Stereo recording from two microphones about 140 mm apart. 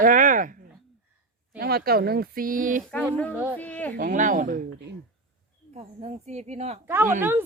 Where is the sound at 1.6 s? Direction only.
90° right; by 2.8 s 70° right (ahead or behind).